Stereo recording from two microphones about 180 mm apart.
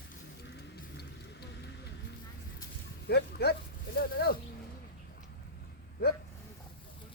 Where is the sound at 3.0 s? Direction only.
65° left (ahead or behind).